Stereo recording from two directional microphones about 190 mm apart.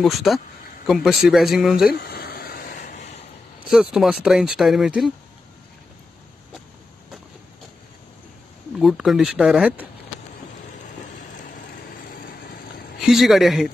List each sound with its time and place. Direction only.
0.0 s speech: centre (ahead or behind)
1.9 s a sound: 55° left (ahead or behind)
3.7 s speech: centre (ahead or behind)
8.7 s speech: centre (ahead or behind)
13.0 s speech: centre (ahead or behind)